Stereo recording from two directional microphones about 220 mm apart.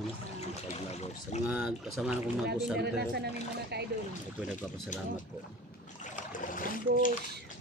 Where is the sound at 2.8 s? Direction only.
50° right (ahead or behind).